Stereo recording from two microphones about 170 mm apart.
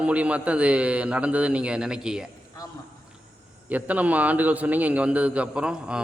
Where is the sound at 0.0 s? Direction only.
5° right (ahead or behind).